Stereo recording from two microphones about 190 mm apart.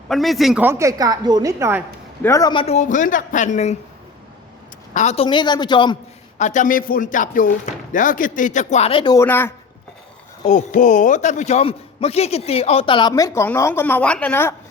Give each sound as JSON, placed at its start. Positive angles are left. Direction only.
{"t": 0.1, "sound": "a woman's voice", "side_deg": 0}
{"t": 2.2, "sound": "a man's voice", "side_deg": 20}
{"t": 4.9, "sound": "a man's voice", "side_deg": 35}
{"t": 6.4, "sound": "speech", "side_deg": 40}
{"t": 9.2, "sound": "speech", "side_deg": 10}
{"t": 10.4, "sound": "a man's voice", "side_deg": 40}